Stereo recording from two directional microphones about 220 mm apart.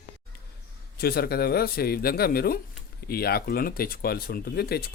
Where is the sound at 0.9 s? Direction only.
45° left (ahead or behind).